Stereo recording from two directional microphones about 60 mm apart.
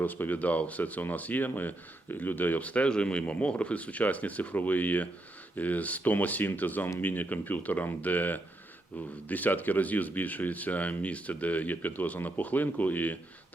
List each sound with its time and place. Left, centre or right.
0.0 s speech: left